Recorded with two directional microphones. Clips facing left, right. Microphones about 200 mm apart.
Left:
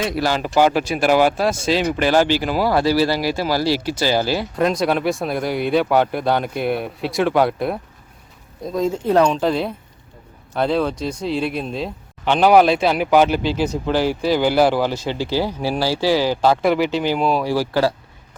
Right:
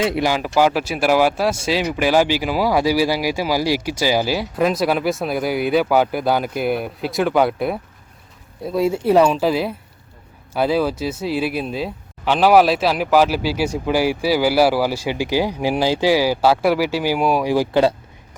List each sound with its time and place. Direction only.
0.0 s speech: 25° right (ahead or behind)
0.3 s speech: 5° right (ahead or behind)